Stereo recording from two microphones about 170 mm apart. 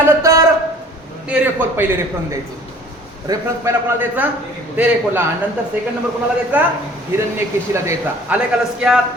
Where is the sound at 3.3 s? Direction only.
25° right (ahead or behind).